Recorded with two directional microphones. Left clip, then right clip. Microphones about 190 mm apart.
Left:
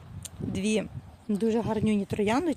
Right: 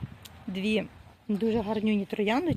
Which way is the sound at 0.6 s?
Centre (ahead or behind).